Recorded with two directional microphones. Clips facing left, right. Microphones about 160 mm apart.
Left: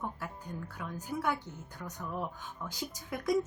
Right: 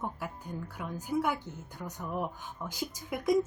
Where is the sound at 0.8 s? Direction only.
10° right (ahead or behind).